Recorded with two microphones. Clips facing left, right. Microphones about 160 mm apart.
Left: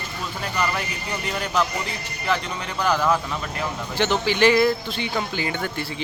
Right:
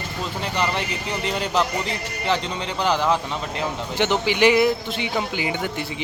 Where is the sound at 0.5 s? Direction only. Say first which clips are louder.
Right 1 dB; 25° right (ahead or behind).